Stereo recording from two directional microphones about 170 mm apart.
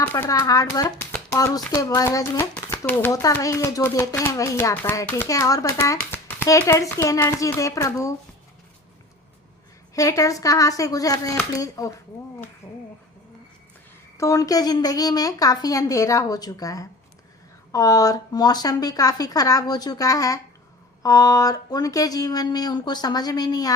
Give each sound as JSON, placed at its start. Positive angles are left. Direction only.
{"t": 0.0, "sound": "a child's voice", "side_deg": 15}
{"t": 9.9, "sound": "speech", "side_deg": 20}
{"t": 12.6, "sound": "a sound", "side_deg": 15}
{"t": 14.2, "sound": "speech", "side_deg": 20}